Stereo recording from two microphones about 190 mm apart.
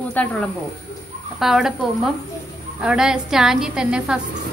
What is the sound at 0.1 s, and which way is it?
A woman's voice, 5° left (ahead or behind).